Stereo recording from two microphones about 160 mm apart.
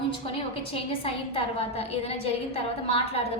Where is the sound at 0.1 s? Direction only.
35° left (ahead or behind).